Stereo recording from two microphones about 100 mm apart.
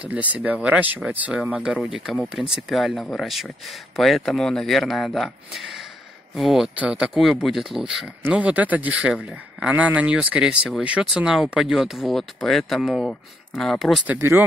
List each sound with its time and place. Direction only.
0.1 s speech: 15° right (ahead or behind)
14.0 s speech: 25° right (ahead or behind)